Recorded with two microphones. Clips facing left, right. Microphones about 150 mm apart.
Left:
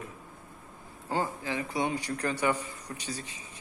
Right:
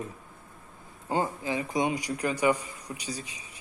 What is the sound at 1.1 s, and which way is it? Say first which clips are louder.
A man's voice: right 3 dB; 20° right (ahead or behind).